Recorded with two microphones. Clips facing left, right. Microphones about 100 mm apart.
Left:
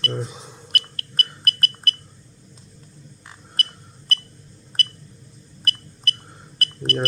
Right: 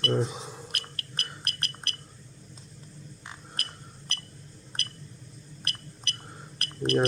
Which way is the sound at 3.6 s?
Centre (ahead or behind).